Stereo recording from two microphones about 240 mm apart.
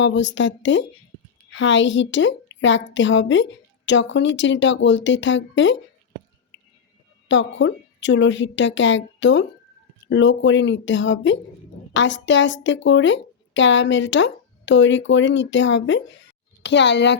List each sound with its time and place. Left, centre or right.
0.0 s a woman's voice: left
7.3 s a woman's voice: left